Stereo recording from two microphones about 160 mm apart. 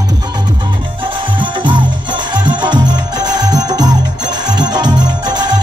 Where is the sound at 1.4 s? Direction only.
30° right (ahead or behind).